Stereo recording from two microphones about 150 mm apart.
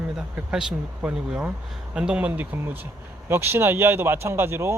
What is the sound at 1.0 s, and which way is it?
Speech, 5° right (ahead or behind).